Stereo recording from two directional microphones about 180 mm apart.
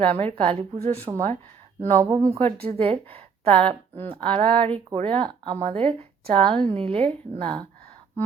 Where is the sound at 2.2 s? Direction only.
35° right (ahead or behind).